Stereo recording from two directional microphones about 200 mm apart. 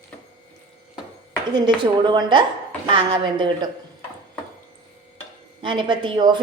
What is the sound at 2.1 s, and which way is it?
A woman's voice, 25° right (ahead or behind).